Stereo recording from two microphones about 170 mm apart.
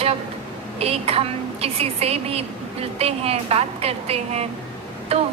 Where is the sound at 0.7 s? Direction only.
35° right (ahead or behind).